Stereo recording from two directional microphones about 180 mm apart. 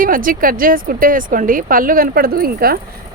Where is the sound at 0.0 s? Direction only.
50° right (ahead or behind).